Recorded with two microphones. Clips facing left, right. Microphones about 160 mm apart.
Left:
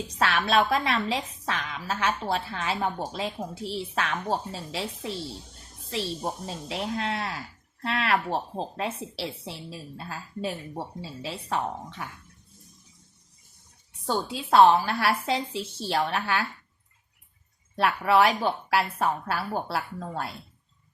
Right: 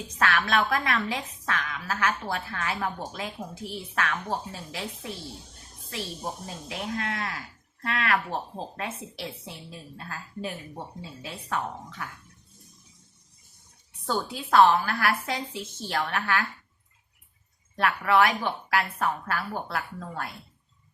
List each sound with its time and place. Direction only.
0.2 s a woman's voice: 30° left (ahead or behind)
14.1 s a woman's voice: 25° left (ahead or behind)
17.7 s a woman's voice: 30° left (ahead or behind)